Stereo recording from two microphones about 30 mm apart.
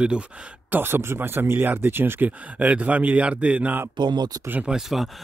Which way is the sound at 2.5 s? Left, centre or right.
Right.